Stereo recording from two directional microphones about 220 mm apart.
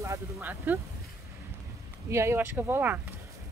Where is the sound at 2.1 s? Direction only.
10° right (ahead or behind).